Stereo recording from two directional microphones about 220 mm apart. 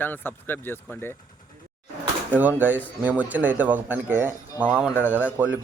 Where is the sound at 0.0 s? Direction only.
10° left (ahead or behind).